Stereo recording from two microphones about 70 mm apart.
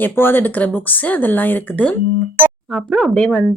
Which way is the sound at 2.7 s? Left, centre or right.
Centre.